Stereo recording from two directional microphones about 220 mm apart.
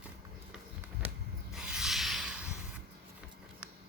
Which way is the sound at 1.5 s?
5° right (ahead or behind).